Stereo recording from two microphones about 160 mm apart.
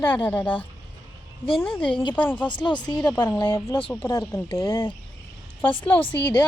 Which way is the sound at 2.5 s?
30° left (ahead or behind).